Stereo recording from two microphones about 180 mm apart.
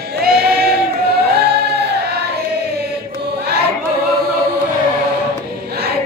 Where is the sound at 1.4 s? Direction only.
65° right (ahead or behind).